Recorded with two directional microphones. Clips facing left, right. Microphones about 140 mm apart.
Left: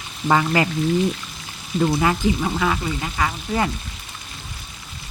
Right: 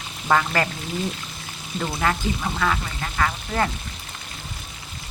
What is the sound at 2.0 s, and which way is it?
Speech, 15° left (ahead or behind).